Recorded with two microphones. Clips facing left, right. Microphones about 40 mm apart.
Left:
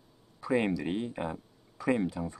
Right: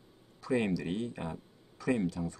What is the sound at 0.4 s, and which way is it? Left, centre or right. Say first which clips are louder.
Speech: left 2 dB; centre.